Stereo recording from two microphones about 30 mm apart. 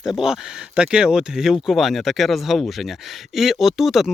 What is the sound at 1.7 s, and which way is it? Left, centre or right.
Speech, centre.